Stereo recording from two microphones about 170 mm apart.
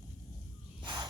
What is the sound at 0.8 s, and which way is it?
Snake, 25° right (ahead or behind).